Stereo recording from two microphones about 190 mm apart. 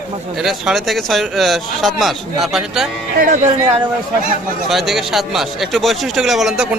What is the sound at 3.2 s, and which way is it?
Speech, 45° right (ahead or behind).